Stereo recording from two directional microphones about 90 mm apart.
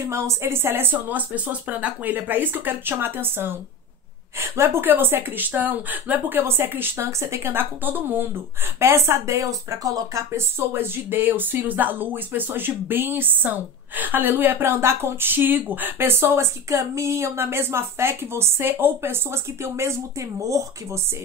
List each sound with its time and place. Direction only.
0.0 s speech: 35° right (ahead or behind)